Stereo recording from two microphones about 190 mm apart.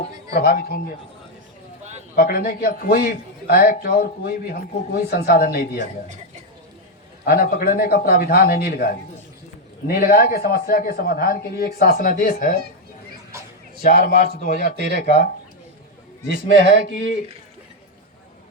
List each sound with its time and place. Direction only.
2.1 s a man's voice: 50° left (ahead or behind)
7.3 s a man's voice: 50° left (ahead or behind)
13.8 s a man's voice: 50° left (ahead or behind)
16.5 s a man's voice: 50° left (ahead or behind)